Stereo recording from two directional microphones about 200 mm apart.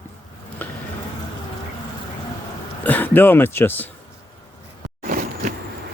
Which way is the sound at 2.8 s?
10° left (ahead or behind).